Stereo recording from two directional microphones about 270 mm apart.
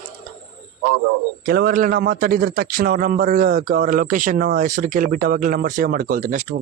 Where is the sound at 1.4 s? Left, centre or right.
Right.